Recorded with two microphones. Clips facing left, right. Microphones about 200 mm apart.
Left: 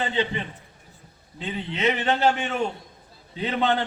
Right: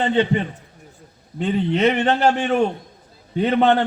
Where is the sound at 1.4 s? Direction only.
50° right (ahead or behind).